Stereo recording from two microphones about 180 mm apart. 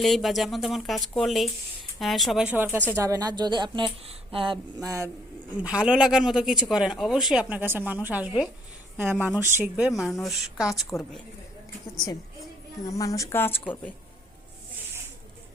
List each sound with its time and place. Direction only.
0.0 s a woman's voice: centre (ahead or behind); by 5.1 s 15° right (ahead or behind)
5.5 s a woman's voice: 5° right (ahead or behind)
10.1 s a woman's voice: centre (ahead or behind)
12.9 s speech: 20° left (ahead or behind)